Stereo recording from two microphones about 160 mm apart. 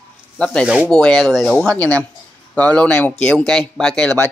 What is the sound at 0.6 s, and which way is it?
A man's voice, 5° right (ahead or behind).